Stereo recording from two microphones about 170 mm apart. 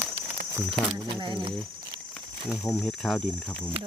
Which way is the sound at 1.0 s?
25° right (ahead or behind).